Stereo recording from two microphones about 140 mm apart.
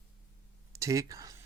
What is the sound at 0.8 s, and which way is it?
Speech, 20° right (ahead or behind).